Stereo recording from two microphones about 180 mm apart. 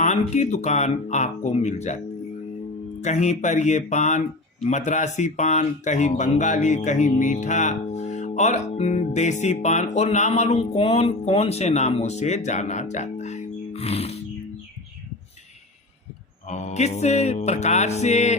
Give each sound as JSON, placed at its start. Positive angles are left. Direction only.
{"t": 0.0, "sound": "speech", "side_deg": 40}
{"t": 3.0, "sound": "speech", "side_deg": 40}
{"t": 16.5, "sound": "speech", "side_deg": 40}